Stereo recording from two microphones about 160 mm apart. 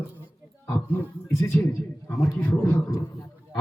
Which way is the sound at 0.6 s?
10° left (ahead or behind).